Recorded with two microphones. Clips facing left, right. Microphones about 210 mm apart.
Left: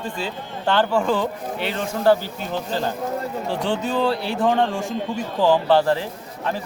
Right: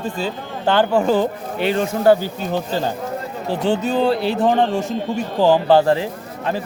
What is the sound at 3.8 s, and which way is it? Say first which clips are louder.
Speech: right 3 dB; 20° right (ahead or behind).